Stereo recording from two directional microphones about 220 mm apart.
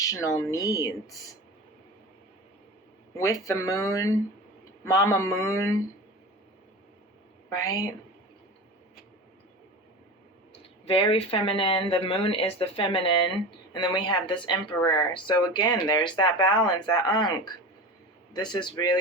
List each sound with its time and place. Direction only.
0.0 s speech: 15° left (ahead or behind)
3.2 s speech: 15° left (ahead or behind)
7.5 s speech: 15° left (ahead or behind)
10.8 s speech: 25° left (ahead or behind)